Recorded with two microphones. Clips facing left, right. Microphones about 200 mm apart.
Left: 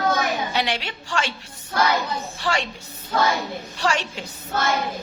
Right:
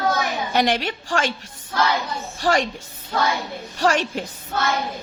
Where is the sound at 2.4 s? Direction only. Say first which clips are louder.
Right 5 dB; 45° right (ahead or behind).